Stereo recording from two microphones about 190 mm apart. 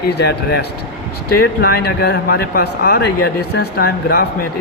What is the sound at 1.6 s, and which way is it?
Speech, 55° left (ahead or behind).